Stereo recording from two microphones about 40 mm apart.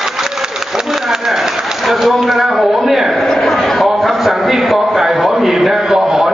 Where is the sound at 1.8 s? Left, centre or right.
Centre.